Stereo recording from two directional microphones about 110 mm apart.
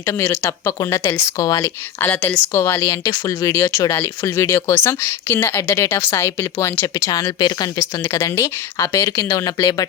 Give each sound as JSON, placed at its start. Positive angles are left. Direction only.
{"t": 0.0, "sound": "speech", "side_deg": 25}
{"t": 2.0, "sound": "a woman's voice", "side_deg": 15}
{"t": 7.3, "sound": "speech", "side_deg": 40}